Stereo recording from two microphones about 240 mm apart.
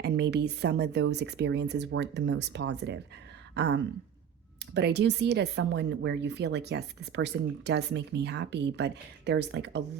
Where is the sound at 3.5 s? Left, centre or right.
Right.